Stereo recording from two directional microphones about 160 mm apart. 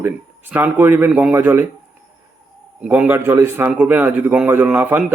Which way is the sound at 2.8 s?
10° right (ahead or behind).